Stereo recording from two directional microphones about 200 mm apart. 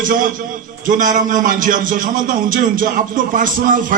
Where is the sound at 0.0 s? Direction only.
40° right (ahead or behind).